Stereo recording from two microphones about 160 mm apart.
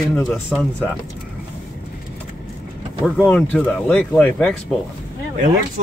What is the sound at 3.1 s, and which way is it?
Speech, 5° left (ahead or behind).